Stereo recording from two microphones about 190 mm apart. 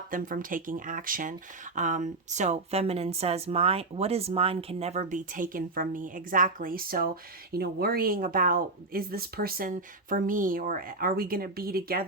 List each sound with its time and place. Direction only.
0.1 s speech: 45° right (ahead or behind)